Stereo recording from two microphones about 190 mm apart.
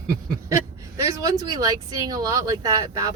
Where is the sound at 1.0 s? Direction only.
15° right (ahead or behind).